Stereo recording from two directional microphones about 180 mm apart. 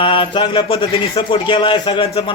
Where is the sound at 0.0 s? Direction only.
30° left (ahead or behind).